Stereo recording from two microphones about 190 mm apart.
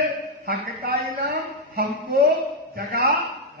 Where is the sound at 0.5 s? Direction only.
50° right (ahead or behind).